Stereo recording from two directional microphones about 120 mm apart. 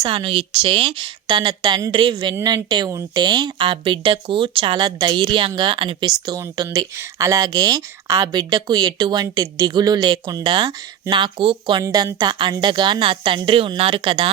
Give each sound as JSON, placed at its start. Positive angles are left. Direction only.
{"t": 0.1, "sound": "speech", "side_deg": -50}
{"t": 6.7, "sound": "speech", "side_deg": -25}
{"t": 11.8, "sound": "speech", "side_deg": -30}